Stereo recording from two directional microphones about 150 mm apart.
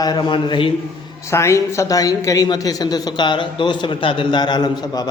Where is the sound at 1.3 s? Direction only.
20° left (ahead or behind).